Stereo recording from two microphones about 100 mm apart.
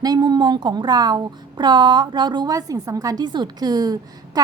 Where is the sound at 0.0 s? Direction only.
45° right (ahead or behind).